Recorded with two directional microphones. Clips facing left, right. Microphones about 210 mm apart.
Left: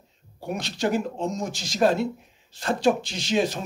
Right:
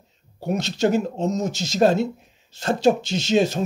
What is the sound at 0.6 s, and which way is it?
Speech, 25° right (ahead or behind).